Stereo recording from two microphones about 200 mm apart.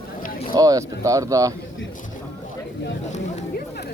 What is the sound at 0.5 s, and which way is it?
Speech, 20° right (ahead or behind).